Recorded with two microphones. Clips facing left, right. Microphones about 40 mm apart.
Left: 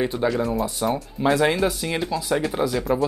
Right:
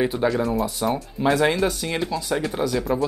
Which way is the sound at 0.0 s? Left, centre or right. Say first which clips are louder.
Right 1 dB; centre.